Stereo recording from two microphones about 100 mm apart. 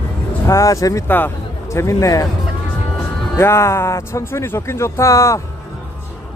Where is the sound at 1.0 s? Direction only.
20° left (ahead or behind).